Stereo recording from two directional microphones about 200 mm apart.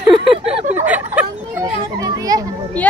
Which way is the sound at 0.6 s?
35° right (ahead or behind).